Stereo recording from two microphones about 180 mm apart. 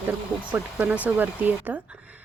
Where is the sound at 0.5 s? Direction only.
10° right (ahead or behind).